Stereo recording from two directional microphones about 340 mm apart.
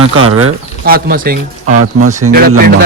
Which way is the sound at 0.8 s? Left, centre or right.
Right.